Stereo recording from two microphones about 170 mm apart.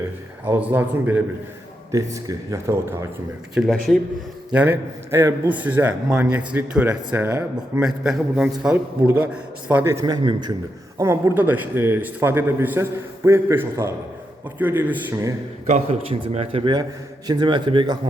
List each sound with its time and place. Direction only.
0.4 s a man's voice: 10° right (ahead or behind)
3.5 s a man's voice: centre (ahead or behind)
15.6 s a man's voice: 40° right (ahead or behind)